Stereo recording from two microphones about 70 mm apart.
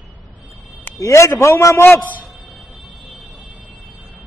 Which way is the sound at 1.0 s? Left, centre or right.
Left.